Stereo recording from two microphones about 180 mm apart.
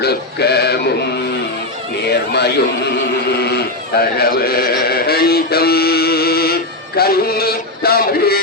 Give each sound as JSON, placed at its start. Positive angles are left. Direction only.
{"t": 0.0, "sound": "a sound", "side_deg": 60}
{"t": 2.0, "sound": "speech", "side_deg": 65}
{"t": 4.2, "sound": "male singing", "side_deg": 60}